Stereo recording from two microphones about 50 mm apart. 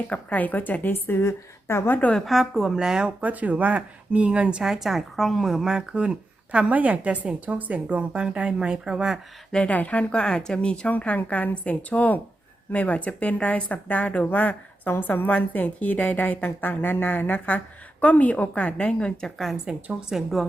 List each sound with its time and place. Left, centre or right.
0.1 s speech: left
1.2 s a woman's voice: left
1.9 s speech: left
2.2 s speech: centre
3.2 s speech: right
4.6 s speech: centre
5.6 s speech: centre
6.7 s speech: right; by 9.1 s centre
9.5 s speech: left
10.9 s speech: left
14.8 s a woman's voice: left; by 19.3 s centre
19.6 s speech: centre